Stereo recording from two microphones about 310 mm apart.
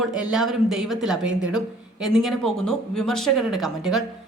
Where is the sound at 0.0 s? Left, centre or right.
Centre.